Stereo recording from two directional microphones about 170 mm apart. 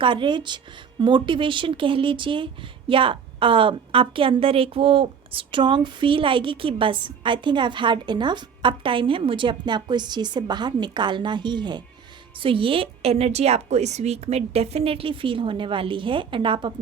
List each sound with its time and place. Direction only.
0.0 s a woman's voice: 30° right (ahead or behind)